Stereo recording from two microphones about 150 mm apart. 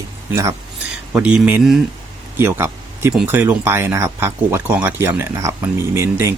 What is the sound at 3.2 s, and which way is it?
Speech, 15° right (ahead or behind).